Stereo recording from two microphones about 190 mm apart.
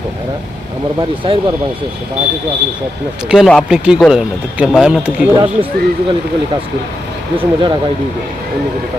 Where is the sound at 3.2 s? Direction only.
Centre (ahead or behind).